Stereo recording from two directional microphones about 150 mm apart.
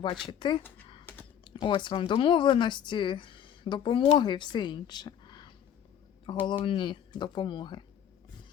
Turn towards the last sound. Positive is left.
turn(degrees=30)  # may be behind; listen again after turning